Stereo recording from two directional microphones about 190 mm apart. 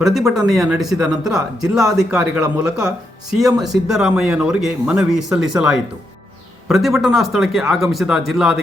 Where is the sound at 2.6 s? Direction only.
5° right (ahead or behind).